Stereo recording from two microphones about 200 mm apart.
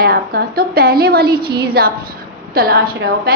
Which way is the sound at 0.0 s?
50° right (ahead or behind).